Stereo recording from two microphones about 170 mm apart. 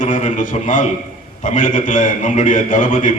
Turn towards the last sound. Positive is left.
turn(degrees=50)  # may be behind; listen again after turning